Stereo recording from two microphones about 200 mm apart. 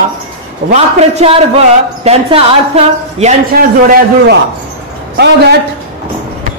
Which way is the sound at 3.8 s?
45° right (ahead or behind).